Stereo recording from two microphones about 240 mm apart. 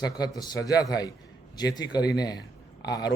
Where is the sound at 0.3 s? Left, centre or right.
Centre.